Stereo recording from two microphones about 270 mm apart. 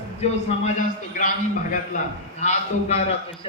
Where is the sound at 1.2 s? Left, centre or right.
Left.